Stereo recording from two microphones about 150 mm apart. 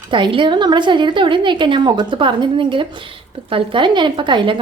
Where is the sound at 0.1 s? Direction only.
35° right (ahead or behind).